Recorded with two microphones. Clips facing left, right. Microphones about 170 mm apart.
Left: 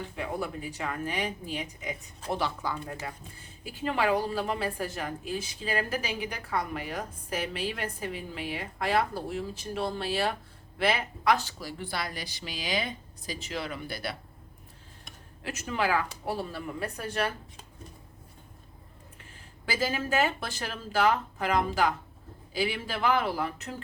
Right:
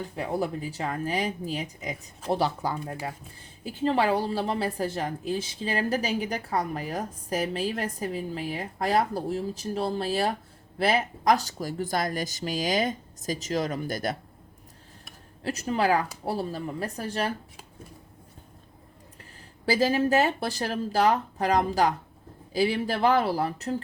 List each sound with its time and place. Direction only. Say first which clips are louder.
0.0 s a woman's voice: right 4 dB; 35° right (ahead or behind)
15.4 s a woman's voice: right 5 dB; 35° right (ahead or behind)
19.6 s a woman's voice: right 8 dB; 35° right (ahead or behind)